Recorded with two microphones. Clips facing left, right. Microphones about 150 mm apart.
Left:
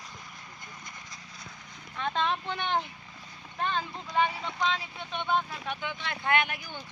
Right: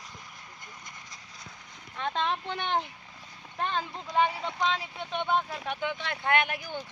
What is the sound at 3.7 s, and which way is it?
Vehicle, 35° right (ahead or behind).